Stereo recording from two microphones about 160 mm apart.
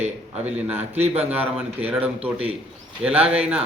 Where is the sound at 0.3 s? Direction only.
10° right (ahead or behind).